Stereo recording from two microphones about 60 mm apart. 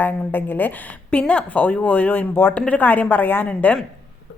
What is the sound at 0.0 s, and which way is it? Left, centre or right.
A woman's voice, left.